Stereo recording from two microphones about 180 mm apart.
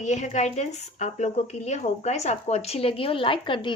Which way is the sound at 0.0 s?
40° left (ahead or behind).